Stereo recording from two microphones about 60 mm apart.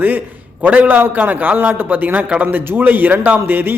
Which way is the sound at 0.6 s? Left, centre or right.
Right.